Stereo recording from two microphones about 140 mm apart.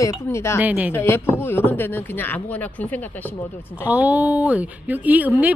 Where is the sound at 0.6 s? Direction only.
10° right (ahead or behind).